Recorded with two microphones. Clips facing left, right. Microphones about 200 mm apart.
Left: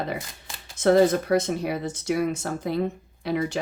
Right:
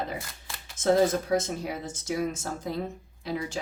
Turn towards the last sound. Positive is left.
turn(degrees=65)  # may be behind; listen again after turning